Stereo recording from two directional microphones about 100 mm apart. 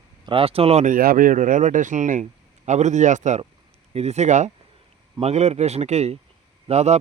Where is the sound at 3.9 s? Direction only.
90° right.